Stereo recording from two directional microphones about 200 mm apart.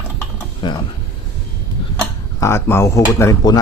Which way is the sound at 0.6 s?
20° left (ahead or behind).